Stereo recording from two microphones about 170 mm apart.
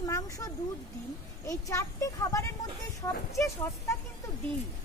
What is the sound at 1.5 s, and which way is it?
Speech, 20° left (ahead or behind).